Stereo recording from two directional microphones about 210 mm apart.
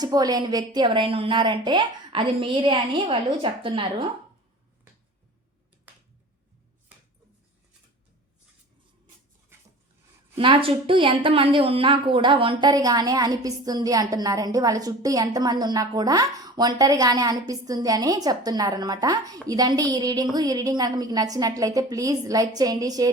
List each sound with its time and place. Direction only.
0.0 s a woman's voice: 20° right (ahead or behind)
10.3 s a woman's voice: 25° right (ahead or behind)